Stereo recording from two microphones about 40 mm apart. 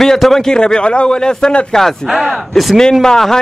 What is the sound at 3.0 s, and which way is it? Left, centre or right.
Speech, centre.